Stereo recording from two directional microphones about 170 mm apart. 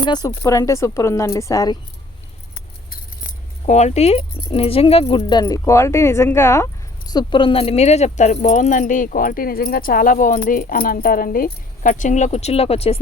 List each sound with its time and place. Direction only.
0.0 s speech: 25° left (ahead or behind)
2.9 s keys jangling: 45° left (ahead or behind)
4.4 s speech: 35° left (ahead or behind); by 6.7 s 15° left (ahead or behind)
7.1 s speech: 25° left (ahead or behind)